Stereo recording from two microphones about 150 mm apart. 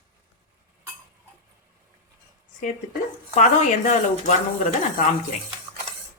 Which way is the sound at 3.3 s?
50° left (ahead or behind).